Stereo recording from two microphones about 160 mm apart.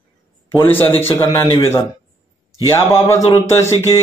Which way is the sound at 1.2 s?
30° left (ahead or behind).